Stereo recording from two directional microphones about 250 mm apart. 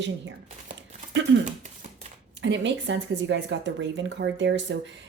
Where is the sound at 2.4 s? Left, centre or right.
Right.